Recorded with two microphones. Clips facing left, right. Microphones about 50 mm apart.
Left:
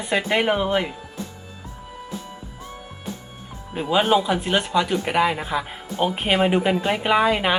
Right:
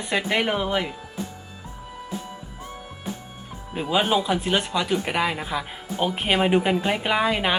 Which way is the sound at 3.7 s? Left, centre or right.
Centre.